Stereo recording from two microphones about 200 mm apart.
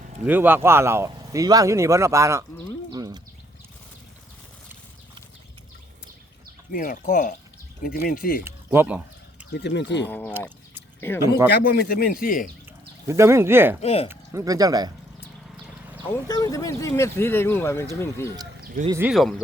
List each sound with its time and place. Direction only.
0.3 s speech: 10° right (ahead or behind)
2.9 s a sound: 20° right (ahead or behind)
6.7 s speech: 45° left (ahead or behind)
8.4 s a sound: 10° right (ahead or behind)
9.5 s speech: 55° left (ahead or behind)
10.1 s speech: 10° left (ahead or behind)
11.5 s speech: 50° left (ahead or behind)
13.1 s speech: 15° right (ahead or behind)
13.8 s speech: 30° left (ahead or behind)
14.1 s speech: 15° right (ahead or behind)
16.0 s speech: 15° left (ahead or behind)
18.6 s a sound: 45° right (ahead or behind)
18.9 s speech: 10° right (ahead or behind)
19.1 s speech: centre (ahead or behind)